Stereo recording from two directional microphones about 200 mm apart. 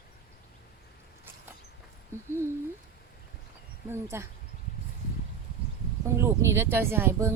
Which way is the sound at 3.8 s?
10° right (ahead or behind).